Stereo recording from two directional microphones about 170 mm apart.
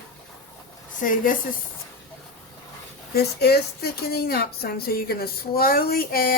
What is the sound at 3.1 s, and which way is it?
A woman's voice, 70° left (ahead or behind).